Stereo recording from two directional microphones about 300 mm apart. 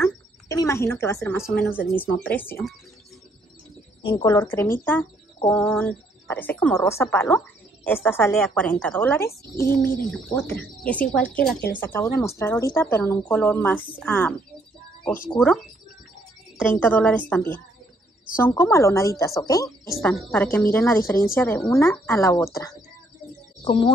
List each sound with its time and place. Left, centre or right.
0.5 s a woman's voice: centre
4.0 s speech: centre
16.6 s speech: centre